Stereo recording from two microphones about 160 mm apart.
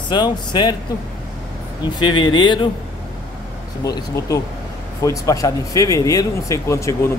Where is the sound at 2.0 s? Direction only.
30° left (ahead or behind).